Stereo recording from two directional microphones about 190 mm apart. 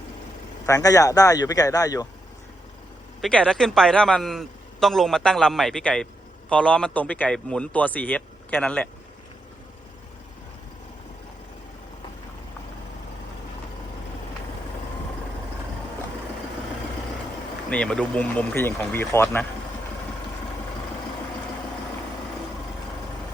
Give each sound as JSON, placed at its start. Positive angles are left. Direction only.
{"t": 0.6, "sound": "speech", "side_deg": 20}
{"t": 3.2, "sound": "a man's voice", "side_deg": 5}
{"t": 17.7, "sound": "speech", "side_deg": 5}